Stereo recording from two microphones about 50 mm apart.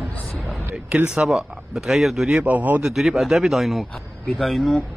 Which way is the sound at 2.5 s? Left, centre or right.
Right.